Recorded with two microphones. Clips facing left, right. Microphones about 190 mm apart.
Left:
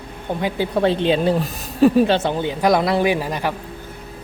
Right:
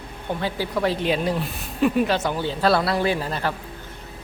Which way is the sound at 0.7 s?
25° left (ahead or behind).